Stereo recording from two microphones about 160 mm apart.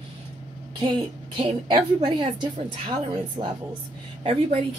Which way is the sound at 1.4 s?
30° right (ahead or behind).